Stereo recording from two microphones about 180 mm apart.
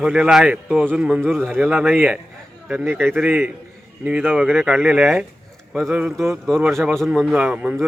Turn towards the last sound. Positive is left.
turn(degrees=-5)  # may be behind; listen again after turning